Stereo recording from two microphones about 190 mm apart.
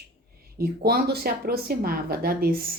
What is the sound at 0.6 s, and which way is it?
Speech, 55° right (ahead or behind).